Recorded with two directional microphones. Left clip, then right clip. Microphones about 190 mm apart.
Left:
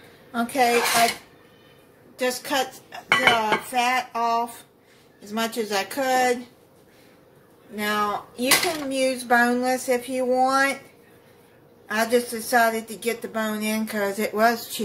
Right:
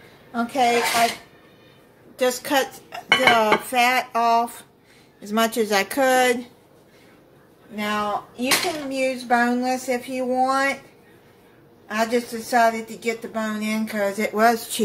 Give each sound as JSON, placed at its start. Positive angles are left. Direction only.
{"t": 0.3, "sound": "speech", "side_deg": 15}
{"t": 2.1, "sound": "a woman's voice", "side_deg": -25}
{"t": 7.7, "sound": "speech", "side_deg": 10}
{"t": 8.4, "sound": "speech", "side_deg": 25}
{"t": 11.9, "sound": "speech", "side_deg": 15}
{"t": 14.3, "sound": "speech", "side_deg": -10}